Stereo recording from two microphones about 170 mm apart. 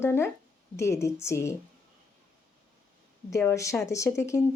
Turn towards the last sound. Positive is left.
turn(degrees=15)  # may be behind; listen again after turning